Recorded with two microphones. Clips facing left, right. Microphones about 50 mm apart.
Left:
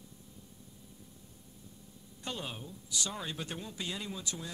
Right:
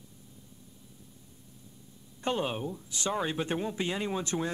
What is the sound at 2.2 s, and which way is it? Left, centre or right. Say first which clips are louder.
Speech: right 10 dB; right.